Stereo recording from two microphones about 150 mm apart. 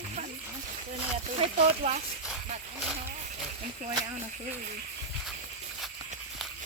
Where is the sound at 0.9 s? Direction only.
50° right (ahead or behind).